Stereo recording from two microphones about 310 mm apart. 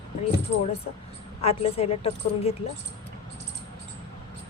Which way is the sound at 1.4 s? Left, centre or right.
Centre.